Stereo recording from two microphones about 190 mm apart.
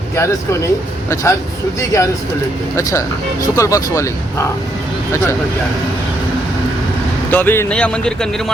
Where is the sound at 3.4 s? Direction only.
15° left (ahead or behind).